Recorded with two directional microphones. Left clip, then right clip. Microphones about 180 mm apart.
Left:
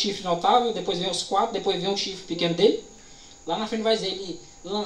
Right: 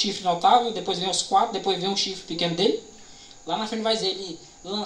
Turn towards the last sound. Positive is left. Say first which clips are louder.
# left 1 dB
turn(degrees=-55)  # may be behind; listen again after turning